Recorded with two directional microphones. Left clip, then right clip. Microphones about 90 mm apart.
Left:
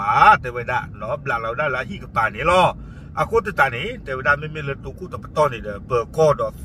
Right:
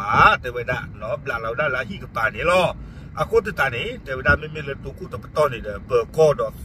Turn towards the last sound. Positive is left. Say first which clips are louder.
# even
turn(degrees=-20)  # may be behind; listen again after turning